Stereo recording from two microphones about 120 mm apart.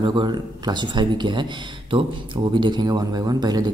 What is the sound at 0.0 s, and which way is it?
Speech, 40° right (ahead or behind).